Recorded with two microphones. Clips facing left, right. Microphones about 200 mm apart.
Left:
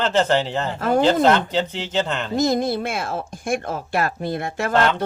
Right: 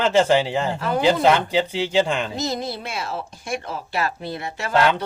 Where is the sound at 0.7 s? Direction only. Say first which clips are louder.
Left 4 dB; 50° left (ahead or behind).